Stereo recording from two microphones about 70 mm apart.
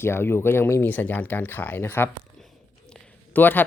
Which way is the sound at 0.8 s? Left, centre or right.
Left.